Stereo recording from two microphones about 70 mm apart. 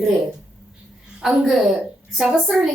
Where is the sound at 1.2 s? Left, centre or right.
Centre.